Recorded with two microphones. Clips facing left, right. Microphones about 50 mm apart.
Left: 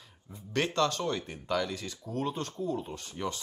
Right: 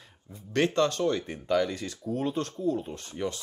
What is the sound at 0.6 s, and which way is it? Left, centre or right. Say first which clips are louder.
Speech: right 4 dB; centre.